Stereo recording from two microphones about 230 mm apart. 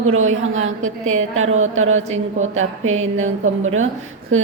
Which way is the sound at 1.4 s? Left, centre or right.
Right.